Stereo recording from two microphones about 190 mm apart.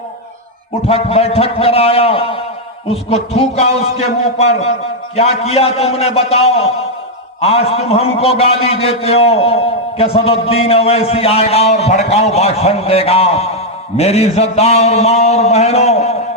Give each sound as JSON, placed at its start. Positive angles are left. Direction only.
{"t": 0.9, "sound": "a man's voice", "side_deg": 30}